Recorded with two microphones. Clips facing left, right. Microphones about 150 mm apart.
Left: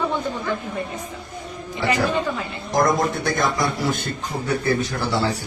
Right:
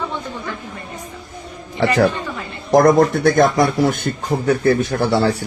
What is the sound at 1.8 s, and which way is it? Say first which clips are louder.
A man's voice: right 5 dB; 70° right (ahead or behind).